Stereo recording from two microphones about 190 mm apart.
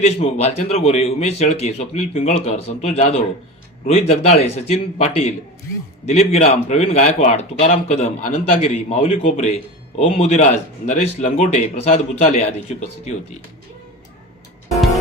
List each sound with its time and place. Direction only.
0.0 s a man's voice: 35° left (ahead or behind)